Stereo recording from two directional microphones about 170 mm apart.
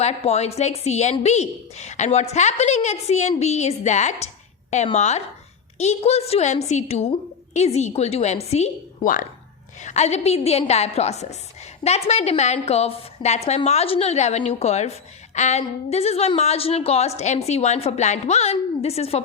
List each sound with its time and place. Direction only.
0.0 s a woman's voice: 40° left (ahead or behind)